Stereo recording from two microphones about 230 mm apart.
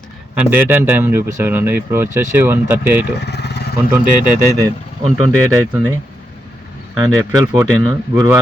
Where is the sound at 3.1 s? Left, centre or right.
Left.